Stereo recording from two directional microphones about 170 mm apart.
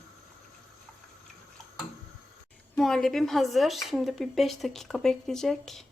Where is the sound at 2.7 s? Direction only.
5° left (ahead or behind).